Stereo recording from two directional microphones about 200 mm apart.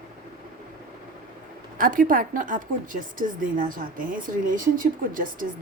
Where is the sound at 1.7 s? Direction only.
45° right (ahead or behind).